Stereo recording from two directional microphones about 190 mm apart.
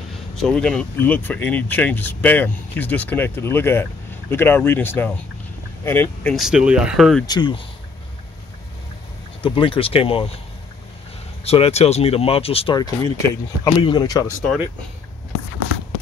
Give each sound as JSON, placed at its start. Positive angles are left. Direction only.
{"t": 0.4, "sound": "speech", "side_deg": 5}
{"t": 6.3, "sound": "speech", "side_deg": -5}
{"t": 7.2, "sound": "speech", "side_deg": 25}
{"t": 9.4, "sound": "speech", "side_deg": 25}
{"t": 11.4, "sound": "speech", "side_deg": 30}